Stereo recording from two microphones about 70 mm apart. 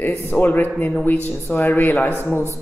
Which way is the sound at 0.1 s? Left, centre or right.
Left.